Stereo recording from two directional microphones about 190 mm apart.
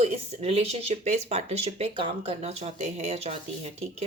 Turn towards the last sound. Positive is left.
turn(degrees=-35)  # may be behind; listen again after turning